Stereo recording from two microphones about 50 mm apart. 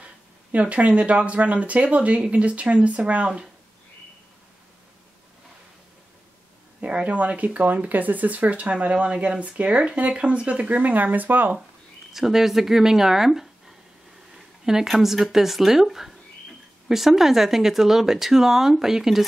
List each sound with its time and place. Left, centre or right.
0.0 s speech: right
6.8 s speech: right
12.1 s speech: centre